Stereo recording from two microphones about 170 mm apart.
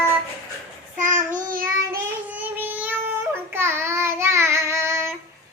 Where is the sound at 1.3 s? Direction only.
55° right (ahead or behind).